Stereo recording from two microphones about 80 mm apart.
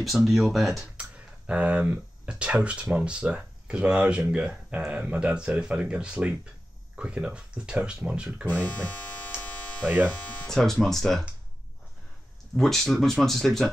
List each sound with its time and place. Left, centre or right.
0.0 s speech: centre
0.9 s speech: centre
9.3 s hum: centre
9.8 s speech: centre
10.4 s speech: centre
12.5 s speech: centre